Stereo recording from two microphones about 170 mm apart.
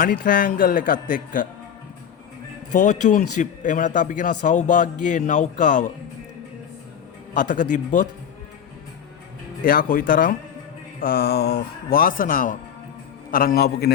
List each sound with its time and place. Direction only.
0.0 s speech: 55° left (ahead or behind)
2.7 s a man's voice: 45° left (ahead or behind)
7.3 s a man's voice: 50° left (ahead or behind)
9.6 s speech: 55° left (ahead or behind)